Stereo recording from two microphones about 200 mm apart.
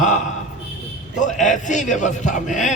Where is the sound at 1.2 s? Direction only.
40° left (ahead or behind).